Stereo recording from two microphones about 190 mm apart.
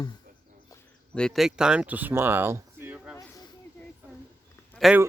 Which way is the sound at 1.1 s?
5° left (ahead or behind).